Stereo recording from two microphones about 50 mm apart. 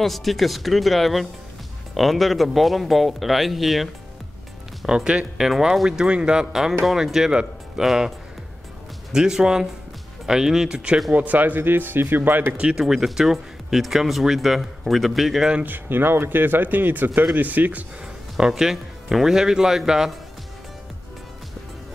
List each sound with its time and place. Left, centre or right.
0.0 s speech: centre
4.8 s speech: centre
9.1 s speech: centre
11.1 s speech: right
12.7 s speech: centre
15.6 s speech: right
18.5 s speech: centre